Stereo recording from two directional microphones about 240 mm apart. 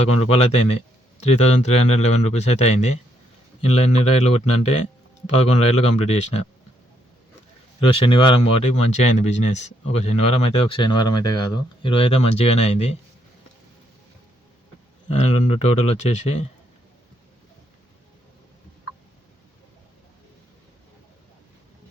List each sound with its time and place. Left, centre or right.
0.0 s speech: left
7.8 s speech: left
15.1 s speech: left